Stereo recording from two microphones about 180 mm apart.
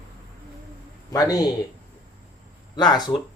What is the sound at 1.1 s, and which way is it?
Speech, 20° left (ahead or behind).